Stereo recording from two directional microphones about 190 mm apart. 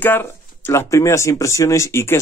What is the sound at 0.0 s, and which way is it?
Speech, 10° left (ahead or behind).